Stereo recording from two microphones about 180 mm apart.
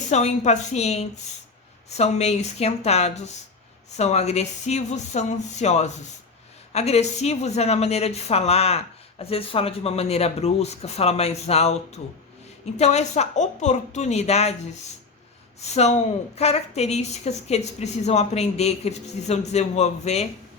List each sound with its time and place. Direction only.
0.1 s a woman's voice: 40° left (ahead or behind)
15.6 s a woman's voice: 40° left (ahead or behind)